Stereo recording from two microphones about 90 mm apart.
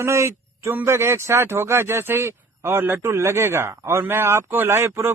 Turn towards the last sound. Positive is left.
turn(degrees=-30)  # may be behind; listen again after turning